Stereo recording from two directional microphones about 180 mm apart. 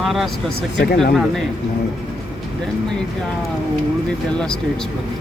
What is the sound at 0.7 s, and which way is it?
Speech, 60° left (ahead or behind).